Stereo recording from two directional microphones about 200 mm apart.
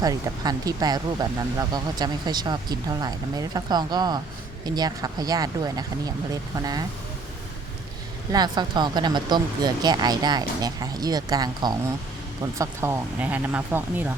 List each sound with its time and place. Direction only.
0.0 s speech: 20° right (ahead or behind)
8.3 s speech: 20° right (ahead or behind)